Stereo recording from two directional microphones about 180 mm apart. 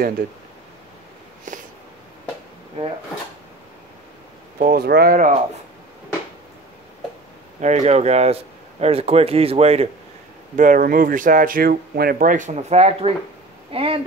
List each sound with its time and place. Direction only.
0.2 s speech: 55° right (ahead or behind)
1.5 s a sound: 45° right (ahead or behind)
4.6 s speech: 55° right (ahead or behind)
7.6 s speech: 40° right (ahead or behind)
10.5 s speech: 50° right (ahead or behind); by 14.0 s 30° right (ahead or behind)